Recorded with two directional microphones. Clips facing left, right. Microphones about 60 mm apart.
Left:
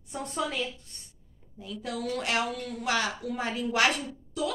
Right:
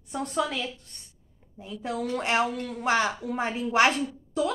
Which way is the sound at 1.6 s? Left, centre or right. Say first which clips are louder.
Right 3 dB; right.